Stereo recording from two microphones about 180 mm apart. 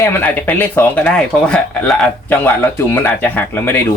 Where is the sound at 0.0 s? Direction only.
10° left (ahead or behind).